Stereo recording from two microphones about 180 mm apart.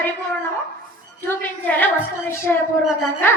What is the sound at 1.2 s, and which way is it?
A woman's voice, 10° left (ahead or behind).